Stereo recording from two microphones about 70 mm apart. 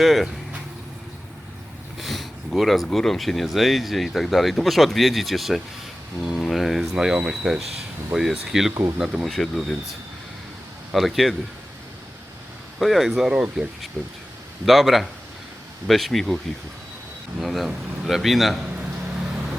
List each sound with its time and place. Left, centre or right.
0.0 s speech: centre
2.0 s speech: centre
8.7 s speech: right
9.0 s speech: centre
9.3 s speech: centre
10.9 s speech: centre
12.8 s speech: centre
17.4 s speech: centre